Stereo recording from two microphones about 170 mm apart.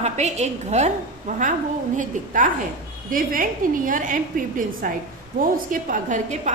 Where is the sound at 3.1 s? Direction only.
55° right (ahead or behind).